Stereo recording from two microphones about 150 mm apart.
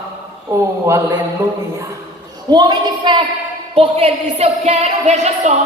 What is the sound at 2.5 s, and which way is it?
A woman's voice, 30° right (ahead or behind).